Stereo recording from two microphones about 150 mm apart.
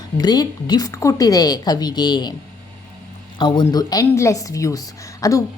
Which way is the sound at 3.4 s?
30° left (ahead or behind).